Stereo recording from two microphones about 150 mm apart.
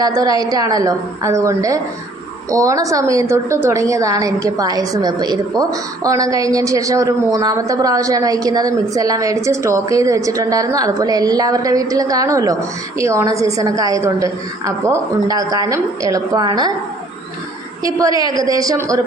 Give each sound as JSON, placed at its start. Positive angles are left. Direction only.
{"t": 0.0, "sound": "a woman's voice", "side_deg": -25}
{"t": 18.2, "sound": "a woman's voice", "side_deg": -25}